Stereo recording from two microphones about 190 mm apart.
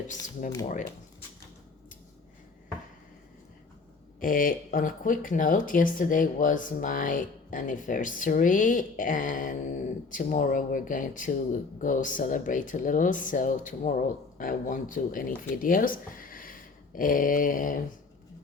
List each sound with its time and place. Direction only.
4.2 s speech: 50° left (ahead or behind)